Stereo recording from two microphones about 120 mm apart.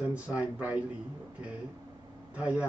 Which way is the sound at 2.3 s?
10° right (ahead or behind).